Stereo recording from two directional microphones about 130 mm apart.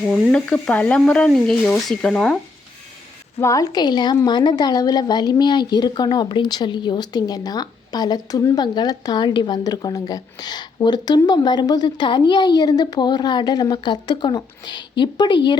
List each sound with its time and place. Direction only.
0.0 s speech: 5° left (ahead or behind)
3.3 s a woman's voice: 25° left (ahead or behind)